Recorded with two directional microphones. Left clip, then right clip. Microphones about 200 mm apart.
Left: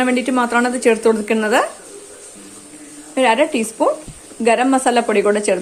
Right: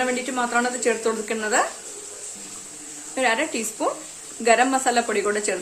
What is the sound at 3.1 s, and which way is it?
Speech, 30° left (ahead or behind).